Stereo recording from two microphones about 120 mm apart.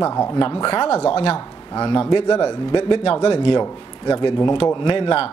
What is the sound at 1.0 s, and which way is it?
Speech, 45° left (ahead or behind).